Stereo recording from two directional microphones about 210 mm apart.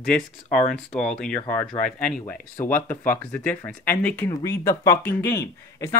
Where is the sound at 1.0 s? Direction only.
5° left (ahead or behind).